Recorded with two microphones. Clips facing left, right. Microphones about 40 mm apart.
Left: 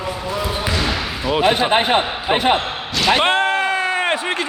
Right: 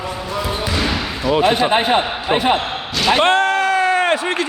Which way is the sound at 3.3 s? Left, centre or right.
Left.